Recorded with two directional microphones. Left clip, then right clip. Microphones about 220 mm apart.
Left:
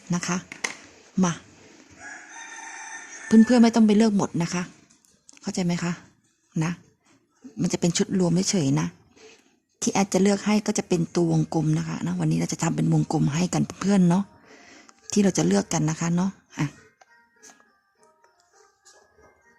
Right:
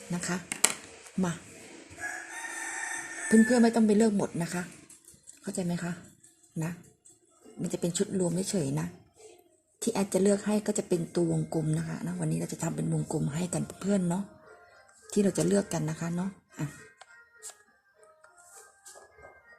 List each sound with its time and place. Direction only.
0.1 s speech: 35° left (ahead or behind)
3.2 s speech: 40° left (ahead or behind)
7.6 s speech: 40° left (ahead or behind)